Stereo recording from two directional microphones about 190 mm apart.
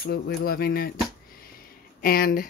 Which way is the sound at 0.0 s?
55° left (ahead or behind).